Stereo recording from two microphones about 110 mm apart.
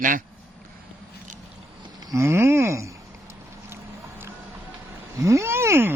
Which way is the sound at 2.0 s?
30° right (ahead or behind).